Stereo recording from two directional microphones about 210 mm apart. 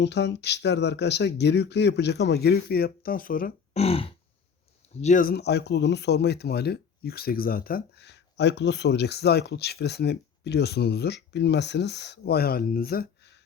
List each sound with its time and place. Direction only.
0.0 s speech: 55° left (ahead or behind)
3.8 s grunt: 25° left (ahead or behind)
4.9 s speech: 35° left (ahead or behind)